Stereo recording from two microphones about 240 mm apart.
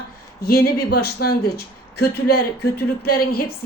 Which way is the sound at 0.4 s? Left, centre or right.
Left.